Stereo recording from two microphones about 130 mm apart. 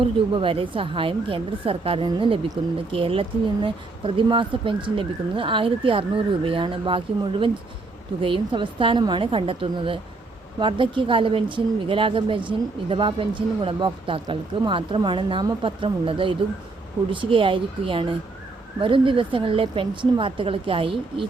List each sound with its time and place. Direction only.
0.0 s speech: 40° right (ahead or behind)